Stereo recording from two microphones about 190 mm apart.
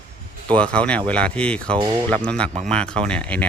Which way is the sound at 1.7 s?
20° right (ahead or behind).